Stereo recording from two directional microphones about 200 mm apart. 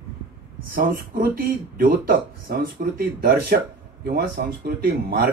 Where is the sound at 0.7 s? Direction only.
45° right (ahead or behind).